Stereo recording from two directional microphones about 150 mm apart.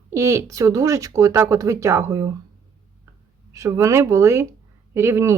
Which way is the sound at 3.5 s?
20° right (ahead or behind).